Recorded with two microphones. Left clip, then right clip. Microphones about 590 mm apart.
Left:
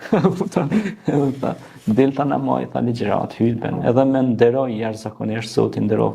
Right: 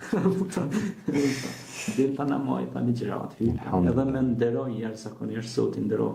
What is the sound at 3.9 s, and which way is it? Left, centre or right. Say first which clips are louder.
Speech: left 10 dB; left.